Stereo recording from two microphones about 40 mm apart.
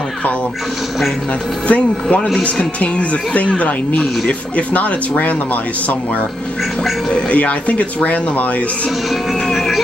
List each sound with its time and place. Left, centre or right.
1.7 s speech: left
7.1 s speech: left
9.5 s music: centre